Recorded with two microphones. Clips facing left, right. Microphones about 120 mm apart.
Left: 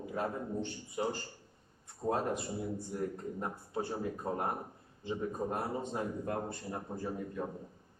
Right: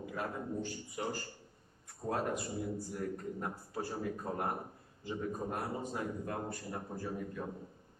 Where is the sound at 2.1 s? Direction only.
25° left (ahead or behind).